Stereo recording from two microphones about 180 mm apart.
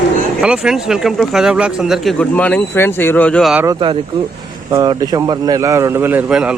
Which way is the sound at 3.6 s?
25° right (ahead or behind).